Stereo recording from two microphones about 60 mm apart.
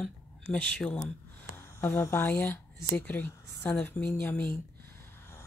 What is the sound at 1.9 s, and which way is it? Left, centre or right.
Speech, left.